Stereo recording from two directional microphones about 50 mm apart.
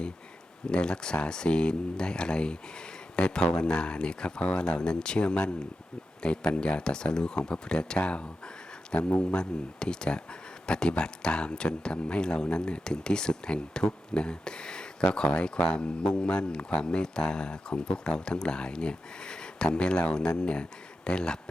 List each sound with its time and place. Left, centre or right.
0.7 s speech: centre